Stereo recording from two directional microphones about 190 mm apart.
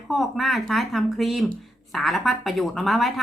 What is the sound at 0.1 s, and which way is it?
Speech, centre (ahead or behind).